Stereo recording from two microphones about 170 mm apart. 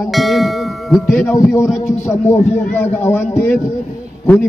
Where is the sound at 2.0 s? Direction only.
15° left (ahead or behind).